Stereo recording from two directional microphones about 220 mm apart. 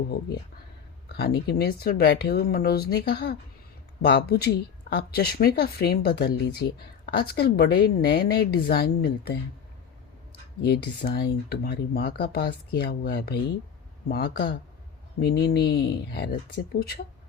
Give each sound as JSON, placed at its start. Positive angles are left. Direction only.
{"t": 1.0, "sound": "speech", "side_deg": 45}
{"t": 10.6, "sound": "speech", "side_deg": 45}